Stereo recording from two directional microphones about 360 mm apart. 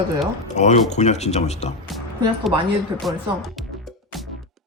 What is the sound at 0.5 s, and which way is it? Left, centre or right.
A man's voice, centre.